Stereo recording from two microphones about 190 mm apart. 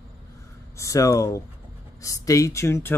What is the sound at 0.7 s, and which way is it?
Speech, 15° left (ahead or behind).